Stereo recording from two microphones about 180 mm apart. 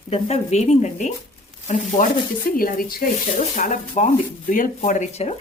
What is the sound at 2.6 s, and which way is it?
Speech, 55° left (ahead or behind).